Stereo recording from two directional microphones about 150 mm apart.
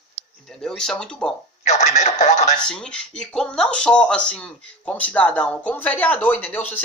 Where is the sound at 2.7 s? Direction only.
5° left (ahead or behind).